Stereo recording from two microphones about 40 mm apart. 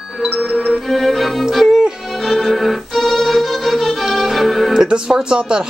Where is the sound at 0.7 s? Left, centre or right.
Centre.